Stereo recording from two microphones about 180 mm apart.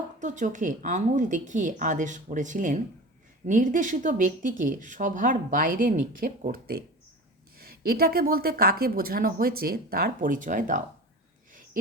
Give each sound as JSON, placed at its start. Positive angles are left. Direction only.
{"t": 0.2, "sound": "speech", "side_deg": -40}